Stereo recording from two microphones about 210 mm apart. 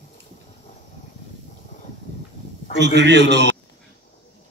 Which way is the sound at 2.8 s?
55° right (ahead or behind).